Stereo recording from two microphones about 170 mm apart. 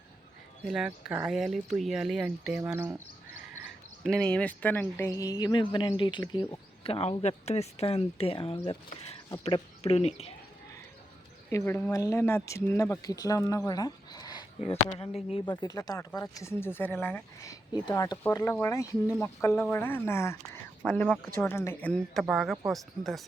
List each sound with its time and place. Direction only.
0.6 s speech: 5° right (ahead or behind)
4.0 s speech: 5° left (ahead or behind); by 10.3 s 35° left (ahead or behind)
11.5 s speech: 15° left (ahead or behind)